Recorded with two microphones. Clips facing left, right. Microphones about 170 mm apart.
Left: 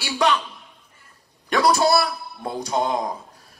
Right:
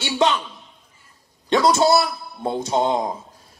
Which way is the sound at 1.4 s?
25° right (ahead or behind).